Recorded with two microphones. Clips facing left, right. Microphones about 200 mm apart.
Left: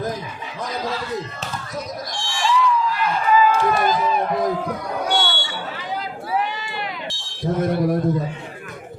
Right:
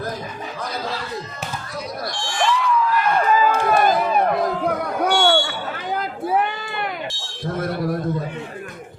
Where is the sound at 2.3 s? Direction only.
55° right (ahead or behind).